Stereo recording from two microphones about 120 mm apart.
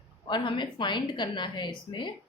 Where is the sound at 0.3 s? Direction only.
45° left (ahead or behind).